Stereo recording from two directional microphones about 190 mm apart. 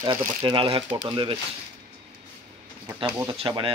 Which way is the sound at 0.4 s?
25° right (ahead or behind).